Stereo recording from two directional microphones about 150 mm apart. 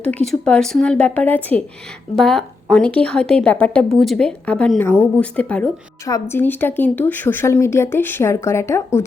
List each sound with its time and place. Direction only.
0.3 s a woman's voice: 5° left (ahead or behind)
6.1 s a woman's voice: 20° left (ahead or behind)